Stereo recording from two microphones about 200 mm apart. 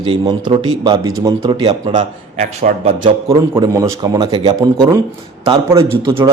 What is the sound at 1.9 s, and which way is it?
A man's voice, 35° right (ahead or behind).